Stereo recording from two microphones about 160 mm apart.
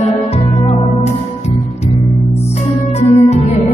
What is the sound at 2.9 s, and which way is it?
Music, 40° left (ahead or behind).